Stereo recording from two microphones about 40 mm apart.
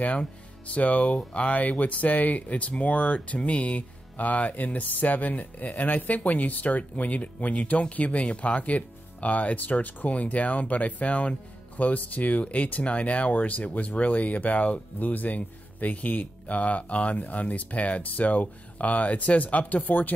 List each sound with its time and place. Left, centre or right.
0.7 s speech: left